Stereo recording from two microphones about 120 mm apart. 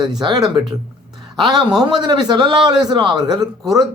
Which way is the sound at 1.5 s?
35° right (ahead or behind).